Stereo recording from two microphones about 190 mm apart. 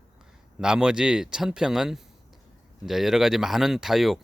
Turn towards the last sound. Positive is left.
turn(degrees=0)  # may be behind; listen again after turning